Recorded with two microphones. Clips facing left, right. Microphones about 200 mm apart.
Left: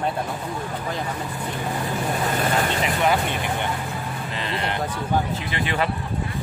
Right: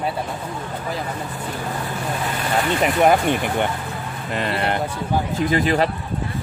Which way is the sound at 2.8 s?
45° right (ahead or behind).